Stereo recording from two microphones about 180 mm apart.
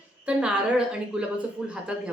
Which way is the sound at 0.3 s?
5° right (ahead or behind).